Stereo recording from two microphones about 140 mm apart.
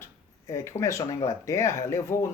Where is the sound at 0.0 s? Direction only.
20° left (ahead or behind).